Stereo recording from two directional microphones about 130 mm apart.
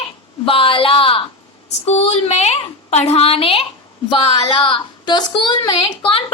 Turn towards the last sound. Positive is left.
turn(degrees=45)  # may be behind; listen again after turning